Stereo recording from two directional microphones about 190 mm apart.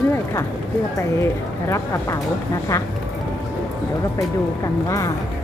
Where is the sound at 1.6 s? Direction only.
15° left (ahead or behind).